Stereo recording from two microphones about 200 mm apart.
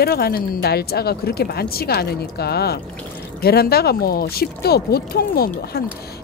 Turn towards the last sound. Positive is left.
turn(degrees=50)  # may be behind; listen again after turning